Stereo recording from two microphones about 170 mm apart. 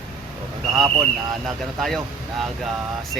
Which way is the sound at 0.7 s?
25° right (ahead or behind).